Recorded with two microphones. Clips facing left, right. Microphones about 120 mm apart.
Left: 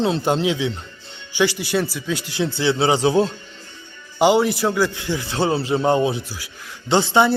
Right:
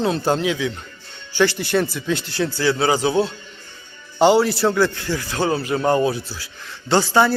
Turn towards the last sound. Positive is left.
turn(degrees=20)  # may be behind; listen again after turning